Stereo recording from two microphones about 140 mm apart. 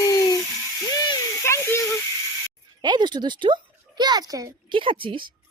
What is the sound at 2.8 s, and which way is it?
A child's voice, 30° right (ahead or behind).